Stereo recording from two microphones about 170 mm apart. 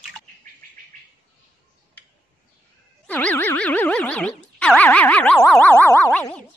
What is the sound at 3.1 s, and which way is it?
Boing, 10° left (ahead or behind).